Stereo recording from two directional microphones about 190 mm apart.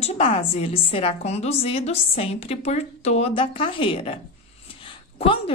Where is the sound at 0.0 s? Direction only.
30° left (ahead or behind).